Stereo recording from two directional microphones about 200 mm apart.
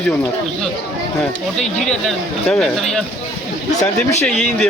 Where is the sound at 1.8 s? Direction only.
Centre (ahead or behind).